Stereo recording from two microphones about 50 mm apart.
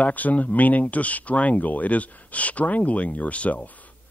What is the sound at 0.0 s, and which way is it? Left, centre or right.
Speech, left.